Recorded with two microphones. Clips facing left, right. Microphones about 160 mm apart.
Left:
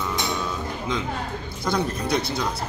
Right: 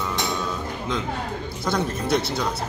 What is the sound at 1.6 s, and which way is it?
Speech, 5° right (ahead or behind).